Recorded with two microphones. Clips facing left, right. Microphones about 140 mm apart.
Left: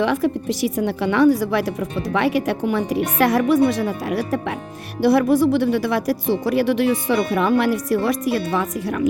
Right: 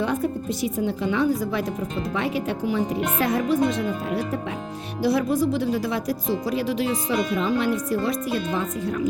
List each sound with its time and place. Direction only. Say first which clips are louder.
0.0 s speech: left 5 dB; 85° left; by 9.0 s 70° left (ahead or behind)